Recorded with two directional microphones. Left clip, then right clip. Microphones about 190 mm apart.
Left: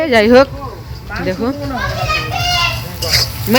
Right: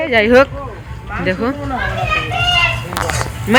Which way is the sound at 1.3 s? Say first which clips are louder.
Right 1 dB; 15° left (ahead or behind).